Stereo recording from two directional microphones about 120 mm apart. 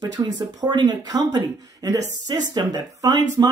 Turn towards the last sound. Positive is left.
turn(degrees=-30)  # may be behind; listen again after turning